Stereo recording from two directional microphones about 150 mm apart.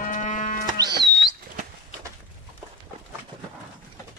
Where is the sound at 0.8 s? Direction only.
25° right (ahead or behind).